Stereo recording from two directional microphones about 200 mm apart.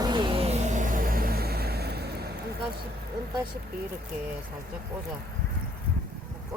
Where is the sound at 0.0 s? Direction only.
25° right (ahead or behind); by 2.3 s 55° right (ahead or behind).